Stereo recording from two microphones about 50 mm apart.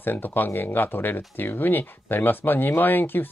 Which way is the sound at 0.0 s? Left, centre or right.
Left.